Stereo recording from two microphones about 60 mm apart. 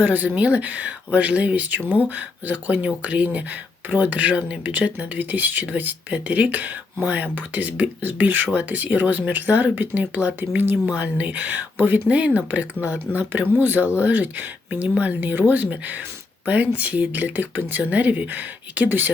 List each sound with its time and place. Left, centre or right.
0.0 s speech: right
10.8 s speech: right